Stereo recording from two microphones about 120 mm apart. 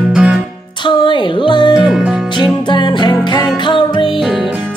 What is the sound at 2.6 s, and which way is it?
Music, 40° left (ahead or behind).